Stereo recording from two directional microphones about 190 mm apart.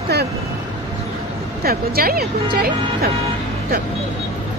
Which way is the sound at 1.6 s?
50° right (ahead or behind).